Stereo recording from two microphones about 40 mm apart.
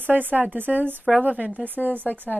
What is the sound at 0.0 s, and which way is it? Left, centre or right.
Speech, right.